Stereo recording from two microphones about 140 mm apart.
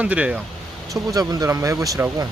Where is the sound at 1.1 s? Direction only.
25° right (ahead or behind).